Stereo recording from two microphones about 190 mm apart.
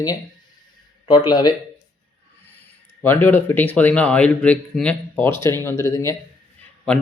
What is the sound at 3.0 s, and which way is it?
A man's voice, 10° left (ahead or behind).